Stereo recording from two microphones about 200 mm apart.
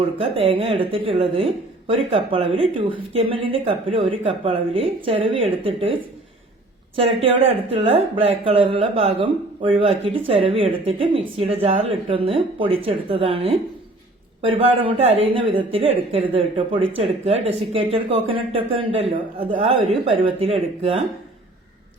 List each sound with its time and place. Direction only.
0.2 s speech: 30° right (ahead or behind)